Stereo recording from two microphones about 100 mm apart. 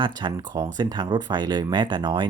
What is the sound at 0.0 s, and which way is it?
Speech, 50° right (ahead or behind).